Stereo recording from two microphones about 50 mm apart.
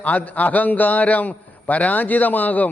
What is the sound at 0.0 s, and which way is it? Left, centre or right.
A man's voice, left.